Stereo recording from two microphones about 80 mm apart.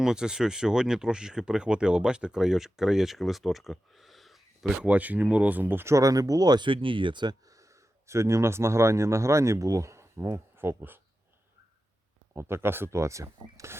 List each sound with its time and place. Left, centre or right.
0.0 s speech: centre
4.8 s speech: centre
5.9 s speech: right
7.5 s speech: right
12.3 s speech: right